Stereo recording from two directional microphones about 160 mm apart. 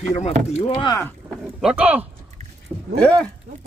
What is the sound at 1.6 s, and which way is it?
Speech, 5° right (ahead or behind).